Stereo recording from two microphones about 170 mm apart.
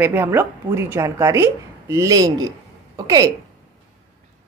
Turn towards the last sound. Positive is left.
turn(degrees=-20)  # may be behind; listen again after turning